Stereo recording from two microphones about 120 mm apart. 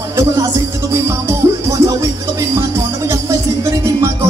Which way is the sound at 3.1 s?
25° right (ahead or behind).